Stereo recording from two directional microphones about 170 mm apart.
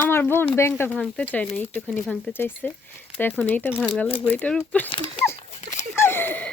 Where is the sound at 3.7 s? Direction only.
Centre (ahead or behind).